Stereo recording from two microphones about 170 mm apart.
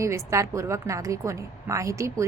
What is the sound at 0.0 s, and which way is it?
A woman's voice, 15° right (ahead or behind).